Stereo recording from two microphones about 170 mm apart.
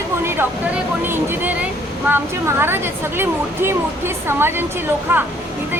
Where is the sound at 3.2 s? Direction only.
15° right (ahead or behind).